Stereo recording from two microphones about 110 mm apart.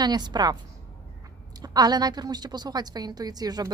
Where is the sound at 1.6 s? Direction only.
35° right (ahead or behind).